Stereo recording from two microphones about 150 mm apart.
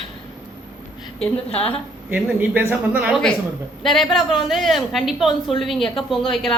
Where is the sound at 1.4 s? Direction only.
40° left (ahead or behind).